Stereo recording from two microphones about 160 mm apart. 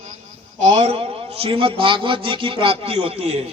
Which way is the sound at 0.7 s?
40° right (ahead or behind).